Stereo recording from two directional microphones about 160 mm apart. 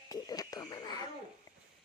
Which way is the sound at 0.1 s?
25° left (ahead or behind).